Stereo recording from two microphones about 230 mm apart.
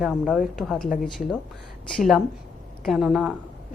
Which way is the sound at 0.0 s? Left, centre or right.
Centre.